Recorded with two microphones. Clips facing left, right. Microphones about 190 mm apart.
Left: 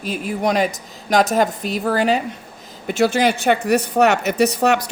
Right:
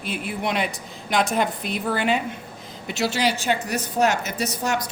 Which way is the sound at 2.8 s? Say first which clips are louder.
Left 7 dB; 50° left (ahead or behind).